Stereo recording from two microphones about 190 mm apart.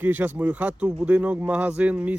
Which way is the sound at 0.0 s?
10° right (ahead or behind).